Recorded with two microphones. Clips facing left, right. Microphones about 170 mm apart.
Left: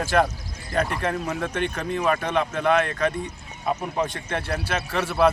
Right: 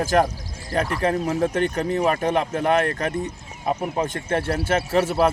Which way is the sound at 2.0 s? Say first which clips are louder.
Even; 25° right (ahead or behind).